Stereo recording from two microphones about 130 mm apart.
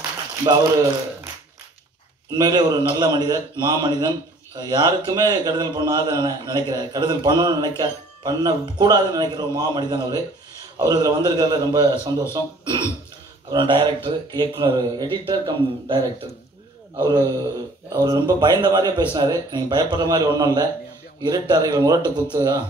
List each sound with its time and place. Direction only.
2.3 s a man's voice: 30° right (ahead or behind)